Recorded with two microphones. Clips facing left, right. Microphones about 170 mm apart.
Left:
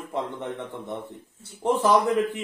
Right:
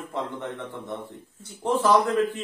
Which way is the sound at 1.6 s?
15° left (ahead or behind).